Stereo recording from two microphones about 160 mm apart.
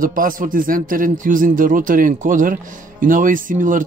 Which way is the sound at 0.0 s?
60° right (ahead or behind).